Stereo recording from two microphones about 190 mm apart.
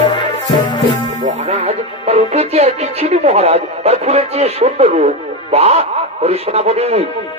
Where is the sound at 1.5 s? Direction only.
35° right (ahead or behind).